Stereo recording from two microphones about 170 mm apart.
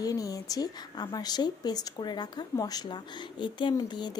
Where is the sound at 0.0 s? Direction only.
20° left (ahead or behind).